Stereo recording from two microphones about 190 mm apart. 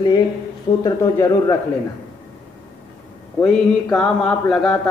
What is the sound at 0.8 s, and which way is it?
Speech, 15° left (ahead or behind).